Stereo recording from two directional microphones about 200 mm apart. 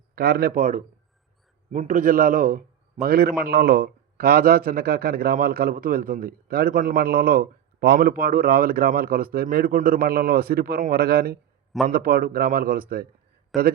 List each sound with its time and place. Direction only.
0.2 s a man's voice: 50° right (ahead or behind)
13.5 s a man's voice: centre (ahead or behind)